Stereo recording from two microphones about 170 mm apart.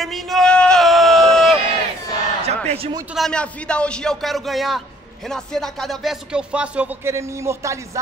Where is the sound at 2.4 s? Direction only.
40° right (ahead or behind).